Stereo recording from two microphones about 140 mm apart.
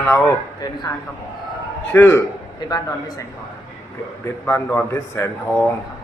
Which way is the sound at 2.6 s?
25° left (ahead or behind).